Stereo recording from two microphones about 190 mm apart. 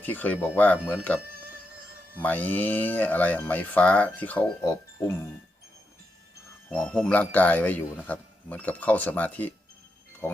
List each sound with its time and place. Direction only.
0.0 s speech: 10° left (ahead or behind)
6.7 s speech: 5° left (ahead or behind)